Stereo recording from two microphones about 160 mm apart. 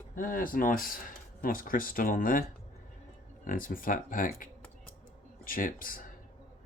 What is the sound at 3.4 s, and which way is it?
Speech, 60° left (ahead or behind).